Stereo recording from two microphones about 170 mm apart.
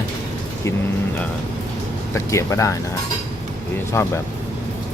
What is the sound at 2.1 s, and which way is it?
Speech, 15° left (ahead or behind).